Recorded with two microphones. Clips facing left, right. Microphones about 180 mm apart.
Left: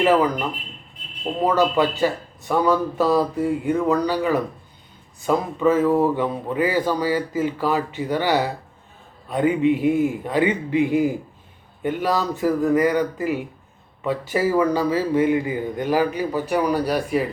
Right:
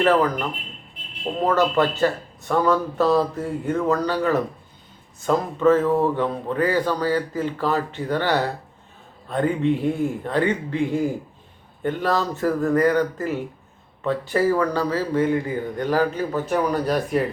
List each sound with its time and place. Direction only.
0.0 s speech: 15° left (ahead or behind)
1.4 s speech: centre (ahead or behind)
1.8 s speech: 15° left (ahead or behind)
3.0 s speech: centre (ahead or behind)
3.8 s speech: 15° left (ahead or behind)